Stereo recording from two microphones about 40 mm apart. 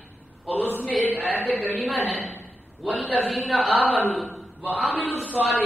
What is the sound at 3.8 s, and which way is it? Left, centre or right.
A man's voice, right.